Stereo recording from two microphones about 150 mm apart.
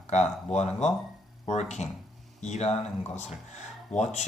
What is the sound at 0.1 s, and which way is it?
Speech, 50° left (ahead or behind).